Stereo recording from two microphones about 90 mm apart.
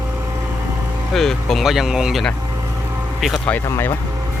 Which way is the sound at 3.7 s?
25° left (ahead or behind).